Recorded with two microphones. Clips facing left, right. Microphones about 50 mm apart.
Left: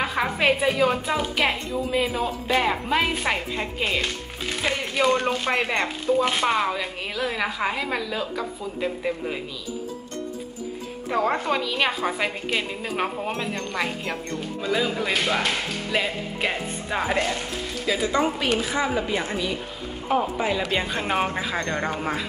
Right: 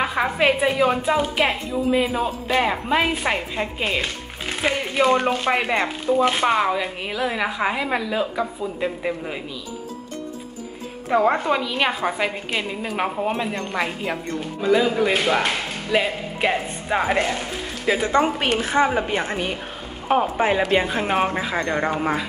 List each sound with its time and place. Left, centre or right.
0.0 s a woman's voice: centre
11.1 s a woman's voice: centre
17.8 s a woman's voice: right
20.6 s a woman's voice: centre